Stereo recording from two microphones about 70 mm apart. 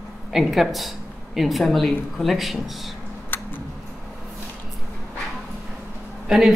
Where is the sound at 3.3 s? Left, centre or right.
Left.